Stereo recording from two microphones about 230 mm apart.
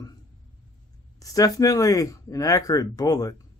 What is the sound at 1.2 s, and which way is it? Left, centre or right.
Speech, centre.